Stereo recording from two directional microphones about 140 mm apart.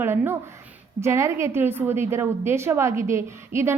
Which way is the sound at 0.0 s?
15° right (ahead or behind).